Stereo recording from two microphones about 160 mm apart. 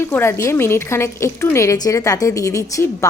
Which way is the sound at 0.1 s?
15° left (ahead or behind).